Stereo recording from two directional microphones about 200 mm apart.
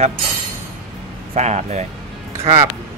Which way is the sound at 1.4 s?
35° right (ahead or behind).